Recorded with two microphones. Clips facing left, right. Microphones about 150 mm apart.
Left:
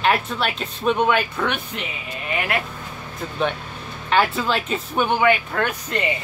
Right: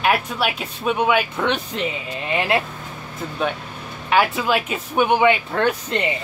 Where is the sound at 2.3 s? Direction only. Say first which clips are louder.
Right 4 dB; 25° right (ahead or behind).